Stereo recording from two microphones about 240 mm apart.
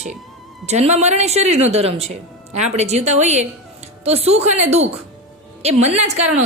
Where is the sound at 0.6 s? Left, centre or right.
Right.